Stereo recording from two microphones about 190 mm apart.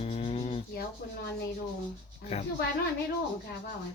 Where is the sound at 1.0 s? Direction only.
55° left (ahead or behind).